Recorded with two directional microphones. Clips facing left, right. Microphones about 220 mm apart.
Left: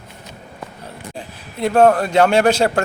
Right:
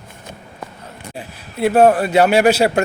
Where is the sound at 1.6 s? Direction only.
5° right (ahead or behind).